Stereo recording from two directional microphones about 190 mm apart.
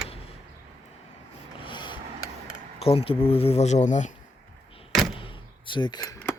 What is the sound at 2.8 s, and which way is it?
Speech, 30° left (ahead or behind).